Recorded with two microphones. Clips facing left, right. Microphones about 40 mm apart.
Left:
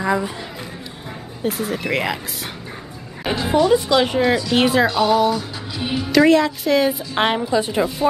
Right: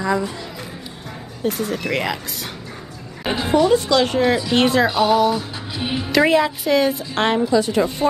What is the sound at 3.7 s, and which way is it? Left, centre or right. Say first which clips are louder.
Music: even; centre.